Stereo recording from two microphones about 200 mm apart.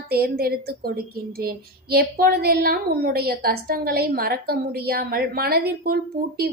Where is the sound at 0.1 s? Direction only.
50° right (ahead or behind).